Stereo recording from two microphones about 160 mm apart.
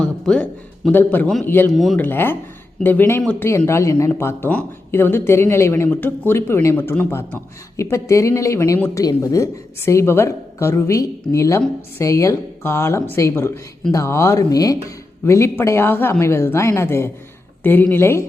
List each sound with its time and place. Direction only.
0.0 s speech: 5° left (ahead or behind)
1.7 s speech: centre (ahead or behind)
2.0 s a woman's voice: 15° left (ahead or behind)